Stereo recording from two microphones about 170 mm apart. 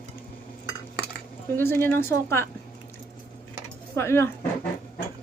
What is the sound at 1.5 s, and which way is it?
Speech, 15° left (ahead or behind).